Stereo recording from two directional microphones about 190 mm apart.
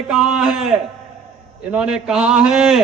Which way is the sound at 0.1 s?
5° right (ahead or behind).